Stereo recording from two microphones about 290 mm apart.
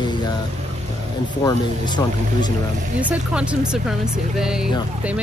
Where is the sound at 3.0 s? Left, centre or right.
Centre.